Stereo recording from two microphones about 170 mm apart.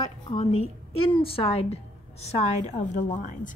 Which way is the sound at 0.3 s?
35° left (ahead or behind).